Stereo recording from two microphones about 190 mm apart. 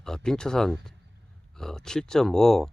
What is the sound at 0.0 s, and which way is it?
Speech, 5° left (ahead or behind).